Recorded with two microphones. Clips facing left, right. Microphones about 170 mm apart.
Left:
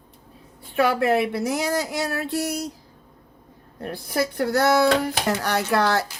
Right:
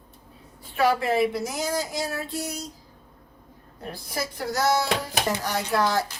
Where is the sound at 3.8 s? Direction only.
60° left (ahead or behind).